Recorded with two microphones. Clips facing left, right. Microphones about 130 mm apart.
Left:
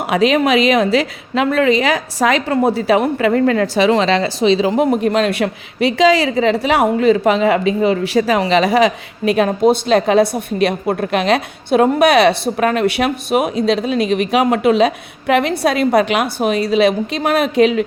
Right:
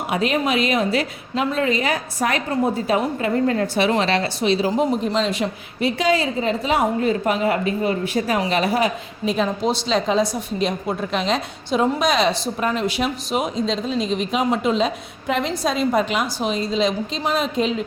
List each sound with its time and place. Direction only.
0.1 s a woman's voice: 90° left; by 17.8 s 70° left (ahead or behind)